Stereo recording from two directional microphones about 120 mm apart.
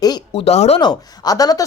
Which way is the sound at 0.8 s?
35° left (ahead or behind).